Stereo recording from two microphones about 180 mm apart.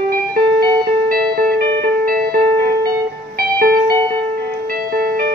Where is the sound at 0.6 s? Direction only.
55° right (ahead or behind).